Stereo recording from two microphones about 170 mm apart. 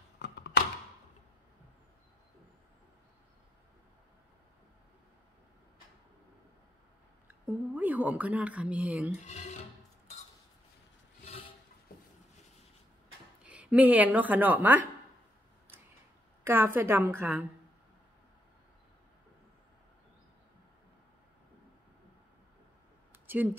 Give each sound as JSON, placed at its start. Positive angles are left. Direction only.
{"t": 0.2, "sound": "a sound", "side_deg": 90}
{"t": 7.7, "sound": "a woman's voice", "side_deg": -10}
{"t": 9.2, "sound": "speech", "side_deg": 45}
{"t": 13.4, "sound": "speech", "side_deg": -5}
{"t": 16.4, "sound": "a woman's voice", "side_deg": -15}
{"t": 23.1, "sound": "a sound", "side_deg": -10}